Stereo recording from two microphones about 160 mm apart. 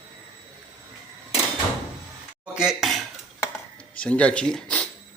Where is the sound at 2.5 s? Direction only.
5° right (ahead or behind).